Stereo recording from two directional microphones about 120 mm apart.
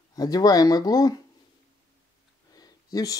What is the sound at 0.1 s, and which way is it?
Speech, 30° left (ahead or behind).